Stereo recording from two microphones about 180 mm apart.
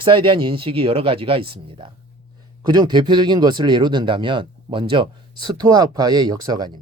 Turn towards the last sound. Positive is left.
turn(degrees=-20)  # may be behind; listen again after turning